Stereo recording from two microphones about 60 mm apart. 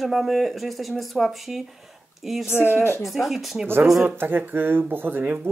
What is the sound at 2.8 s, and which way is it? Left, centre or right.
Speech, left.